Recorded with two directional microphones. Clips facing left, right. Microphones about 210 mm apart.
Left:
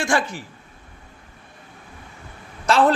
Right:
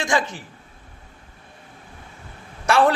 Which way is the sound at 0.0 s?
20° right (ahead or behind).